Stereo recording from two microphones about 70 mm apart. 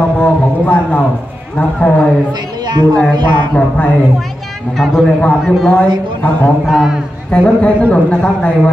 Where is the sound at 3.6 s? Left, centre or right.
Left.